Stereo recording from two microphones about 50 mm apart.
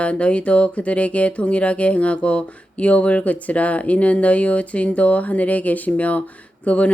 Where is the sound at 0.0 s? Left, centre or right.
Left.